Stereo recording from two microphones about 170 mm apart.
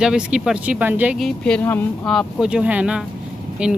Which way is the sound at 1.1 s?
5° left (ahead or behind).